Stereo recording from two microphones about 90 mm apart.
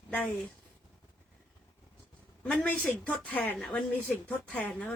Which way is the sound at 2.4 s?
15° left (ahead or behind).